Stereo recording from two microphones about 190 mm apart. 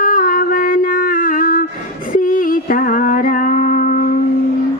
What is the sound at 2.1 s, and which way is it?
Music, 45° left (ahead or behind).